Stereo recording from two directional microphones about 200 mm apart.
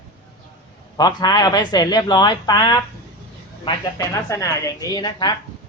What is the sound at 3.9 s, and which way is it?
Speech, 15° left (ahead or behind).